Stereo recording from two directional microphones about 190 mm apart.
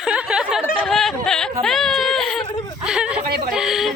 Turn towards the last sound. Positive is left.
turn(degrees=0)  # may be behind; listen again after turning